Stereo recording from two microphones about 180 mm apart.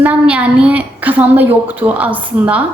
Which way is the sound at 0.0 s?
10° right (ahead or behind).